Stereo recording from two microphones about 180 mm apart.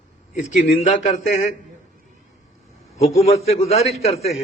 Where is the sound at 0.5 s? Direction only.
40° left (ahead or behind).